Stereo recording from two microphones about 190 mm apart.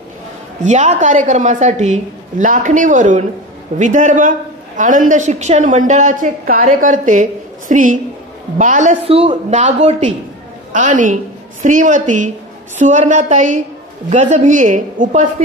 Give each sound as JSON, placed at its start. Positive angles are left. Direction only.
{"t": 0.7, "sound": "a man's voice", "side_deg": -40}